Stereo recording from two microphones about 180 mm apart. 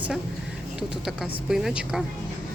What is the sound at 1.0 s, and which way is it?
Speech, centre (ahead or behind).